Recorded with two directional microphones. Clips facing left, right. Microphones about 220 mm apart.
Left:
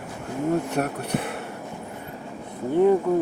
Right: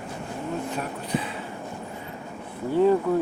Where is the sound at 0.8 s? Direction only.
55° left (ahead or behind).